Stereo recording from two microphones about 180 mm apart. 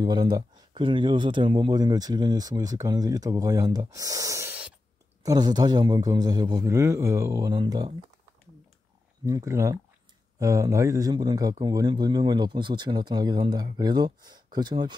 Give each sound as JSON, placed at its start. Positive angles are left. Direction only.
{"t": 0.0, "sound": "speech", "side_deg": -25}
{"t": 9.2, "sound": "speech", "side_deg": -15}